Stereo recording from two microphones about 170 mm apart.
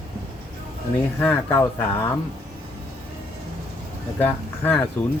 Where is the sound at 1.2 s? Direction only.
10° left (ahead or behind).